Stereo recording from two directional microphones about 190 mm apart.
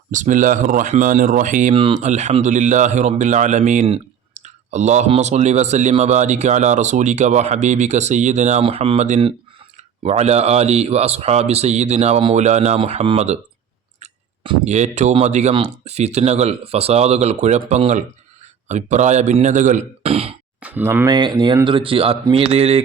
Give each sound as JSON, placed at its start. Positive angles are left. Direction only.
{"t": 0.1, "sound": "speech", "side_deg": -40}
{"t": 14.0, "sound": "clicking", "side_deg": -30}
{"t": 15.1, "sound": "speech", "side_deg": -35}
{"t": 20.6, "sound": "speech", "side_deg": -10}